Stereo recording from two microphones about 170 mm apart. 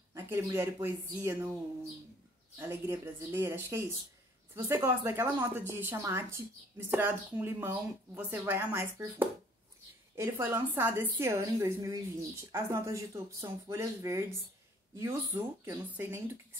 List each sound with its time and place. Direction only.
0.1 s a woman's voice: 15° right (ahead or behind)
2.6 s a woman's voice: 15° right (ahead or behind)
10.1 s a woman's voice: 15° right (ahead or behind)